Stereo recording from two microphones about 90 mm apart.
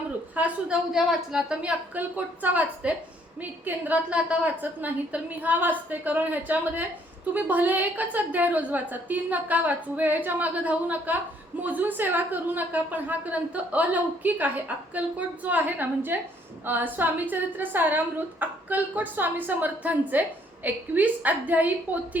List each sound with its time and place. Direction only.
0.3 s a woman's voice: 15° right (ahead or behind)
0.9 s a woman's voice: 5° right (ahead or behind)